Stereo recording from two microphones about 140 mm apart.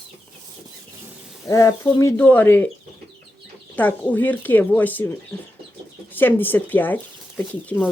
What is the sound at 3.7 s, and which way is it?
Speech, 10° left (ahead or behind).